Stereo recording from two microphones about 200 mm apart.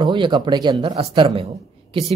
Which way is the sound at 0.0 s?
20° right (ahead or behind).